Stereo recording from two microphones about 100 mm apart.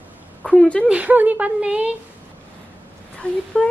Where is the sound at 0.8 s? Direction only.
15° right (ahead or behind).